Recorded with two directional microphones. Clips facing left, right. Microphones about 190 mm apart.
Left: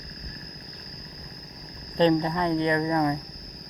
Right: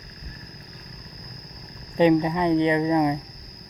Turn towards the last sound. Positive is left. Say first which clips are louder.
# right 3 dB
turn(degrees=-15)  # may be behind; listen again after turning